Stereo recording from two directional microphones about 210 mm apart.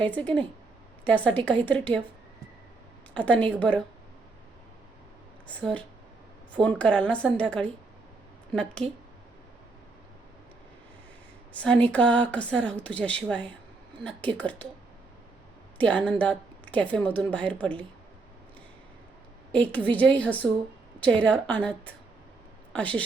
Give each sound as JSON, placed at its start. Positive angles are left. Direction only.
{"t": 0.0, "sound": "a woman's voice", "side_deg": 5}
{"t": 3.2, "sound": "a woman's voice", "side_deg": 5}
{"t": 5.5, "sound": "a woman's voice", "side_deg": 5}
{"t": 8.8, "sound": "speech", "side_deg": -25}
{"t": 11.5, "sound": "a woman's voice", "side_deg": 5}
{"t": 15.8, "sound": "a woman's voice", "side_deg": 5}
{"t": 19.5, "sound": "a woman's voice", "side_deg": 5}